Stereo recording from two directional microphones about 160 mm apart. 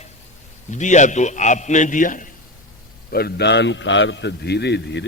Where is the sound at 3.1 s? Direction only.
80° left.